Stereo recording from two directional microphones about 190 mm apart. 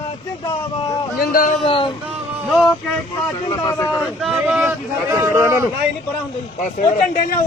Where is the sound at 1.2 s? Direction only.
50° left (ahead or behind).